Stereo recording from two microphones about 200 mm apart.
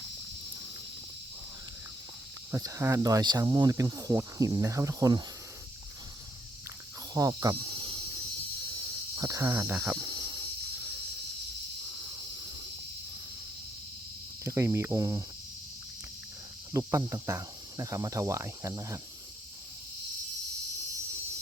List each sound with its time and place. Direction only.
2.5 s speech: 15° right (ahead or behind)
7.1 s cricket: 15° right (ahead or behind)
8.8 s a sound: 15° right (ahead or behind)
14.4 s cricket: 15° right (ahead or behind)
16.7 s speech: 15° right (ahead or behind)